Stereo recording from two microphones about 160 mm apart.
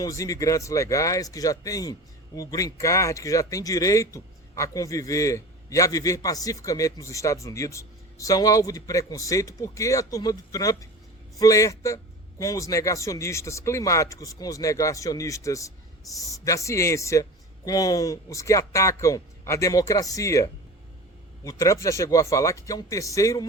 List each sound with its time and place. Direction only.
0.0 s speech: 20° left (ahead or behind)